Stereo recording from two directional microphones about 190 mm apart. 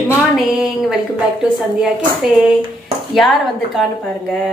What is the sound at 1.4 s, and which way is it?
A woman's voice, 5° right (ahead or behind).